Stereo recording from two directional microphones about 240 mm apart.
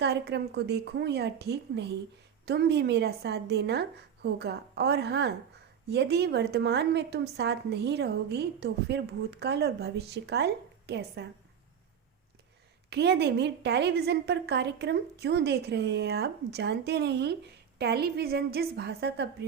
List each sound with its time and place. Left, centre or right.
0.0 s a woman's voice: right
12.9 s a woman's voice: right